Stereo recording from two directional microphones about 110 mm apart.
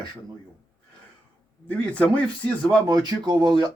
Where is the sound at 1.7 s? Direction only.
15° left (ahead or behind).